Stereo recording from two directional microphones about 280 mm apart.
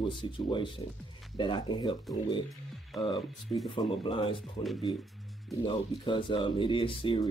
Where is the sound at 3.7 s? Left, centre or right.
Centre.